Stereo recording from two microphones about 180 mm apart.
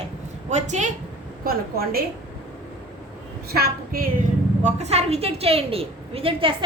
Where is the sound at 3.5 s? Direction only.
55° right (ahead or behind).